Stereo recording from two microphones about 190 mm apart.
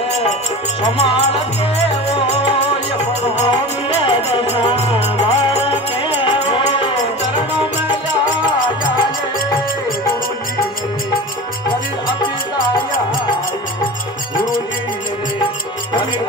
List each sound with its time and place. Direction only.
0.9 s music: 30° left (ahead or behind)
3.4 s music: 25° left (ahead or behind)